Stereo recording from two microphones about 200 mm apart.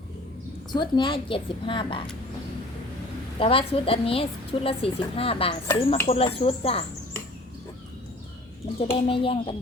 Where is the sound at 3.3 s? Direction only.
25° left (ahead or behind).